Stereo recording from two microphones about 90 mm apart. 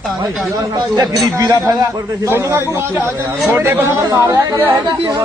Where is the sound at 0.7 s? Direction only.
45° right (ahead or behind).